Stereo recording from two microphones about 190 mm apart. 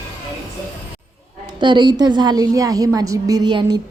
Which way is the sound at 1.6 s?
25° right (ahead or behind).